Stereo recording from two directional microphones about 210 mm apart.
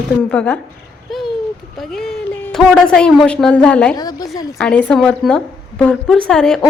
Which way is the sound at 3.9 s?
15° left (ahead or behind).